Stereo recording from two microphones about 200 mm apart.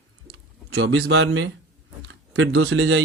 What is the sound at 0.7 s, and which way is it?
A man's voice, 80° right.